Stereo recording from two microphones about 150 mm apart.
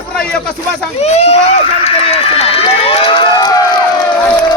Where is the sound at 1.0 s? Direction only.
45° left (ahead or behind).